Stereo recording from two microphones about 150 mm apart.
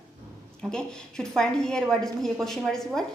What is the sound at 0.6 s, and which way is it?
A woman's voice, 5° left (ahead or behind).